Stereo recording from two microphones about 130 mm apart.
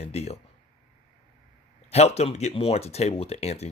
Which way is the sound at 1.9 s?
55° left (ahead or behind).